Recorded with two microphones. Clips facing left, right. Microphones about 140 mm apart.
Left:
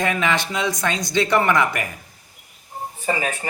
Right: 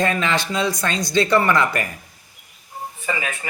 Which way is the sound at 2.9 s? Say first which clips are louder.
Left 3 dB; 35° left (ahead or behind).